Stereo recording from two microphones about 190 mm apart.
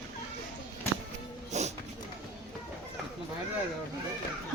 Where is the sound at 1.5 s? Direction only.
35° right (ahead or behind).